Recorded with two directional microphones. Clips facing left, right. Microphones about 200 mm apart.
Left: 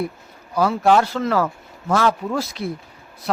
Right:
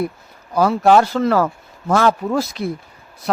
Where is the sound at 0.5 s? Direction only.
45° right (ahead or behind).